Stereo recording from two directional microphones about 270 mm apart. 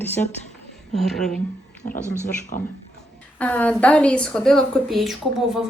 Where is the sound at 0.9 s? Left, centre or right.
Centre.